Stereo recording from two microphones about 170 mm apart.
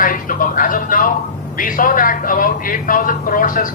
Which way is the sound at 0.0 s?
55° left (ahead or behind).